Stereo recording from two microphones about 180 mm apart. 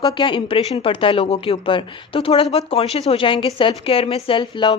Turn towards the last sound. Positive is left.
turn(degrees=25)  # may be behind; listen again after turning